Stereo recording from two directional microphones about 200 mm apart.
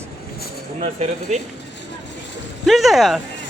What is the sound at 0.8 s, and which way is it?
Speech, 35° right (ahead or behind).